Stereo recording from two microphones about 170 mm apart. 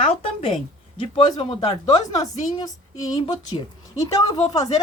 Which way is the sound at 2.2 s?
20° left (ahead or behind).